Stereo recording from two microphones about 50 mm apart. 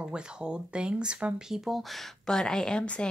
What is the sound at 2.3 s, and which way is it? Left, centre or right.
Speech, centre.